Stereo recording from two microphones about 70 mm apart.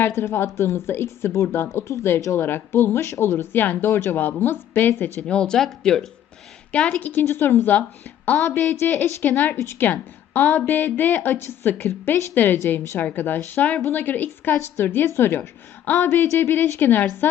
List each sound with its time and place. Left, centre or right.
0.2 s speech: left
5.2 s speech: centre
6.8 s speech: left
8.3 s speech: centre
8.7 s speech: left